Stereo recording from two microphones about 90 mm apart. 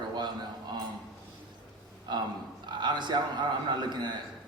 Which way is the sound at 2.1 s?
55° right (ahead or behind).